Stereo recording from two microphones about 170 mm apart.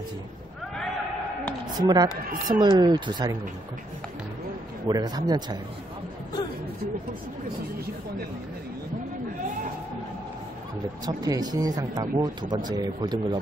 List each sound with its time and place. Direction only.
1.8 s speech: 25° right (ahead or behind)
4.8 s speech: 25° right (ahead or behind)
11.1 s speech: 20° right (ahead or behind)